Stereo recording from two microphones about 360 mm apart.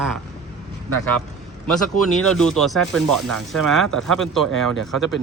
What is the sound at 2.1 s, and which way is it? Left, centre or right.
Speech, centre.